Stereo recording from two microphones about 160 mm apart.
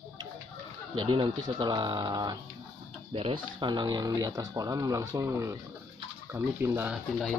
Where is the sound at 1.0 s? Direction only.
30° right (ahead or behind); by 6.9 s 15° right (ahead or behind).